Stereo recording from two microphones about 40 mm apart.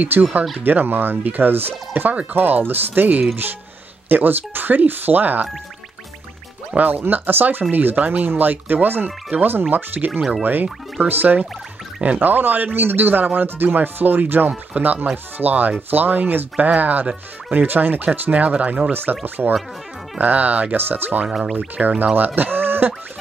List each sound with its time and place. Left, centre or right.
0.2 s speech: right
0.6 s speech: right
4.1 s speech: right
6.9 s speech: right
7.7 s speech: right
17.5 s speech: right
18.3 s speech: right
18.9 s speech: right
20.2 s speech: right
20.7 s speech: right
21.3 s music: centre
21.5 s speech: right